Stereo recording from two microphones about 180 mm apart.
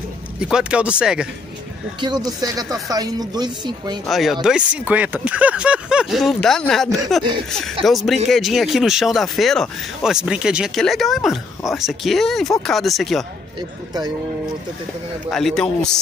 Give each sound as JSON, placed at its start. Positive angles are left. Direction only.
{"t": 0.4, "sound": "speech", "side_deg": -5}
{"t": 2.0, "sound": "speech", "side_deg": -25}
{"t": 4.0, "sound": "speech", "side_deg": 0}
{"t": 13.6, "sound": "speech", "side_deg": -20}
{"t": 15.3, "sound": "speech", "side_deg": 5}